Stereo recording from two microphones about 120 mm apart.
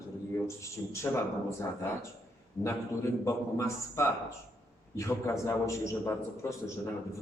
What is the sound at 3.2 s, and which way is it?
A man's voice, 25° left (ahead or behind).